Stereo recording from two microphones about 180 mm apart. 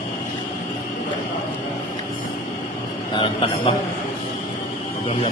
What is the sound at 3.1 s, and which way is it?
Speech, 30° left (ahead or behind).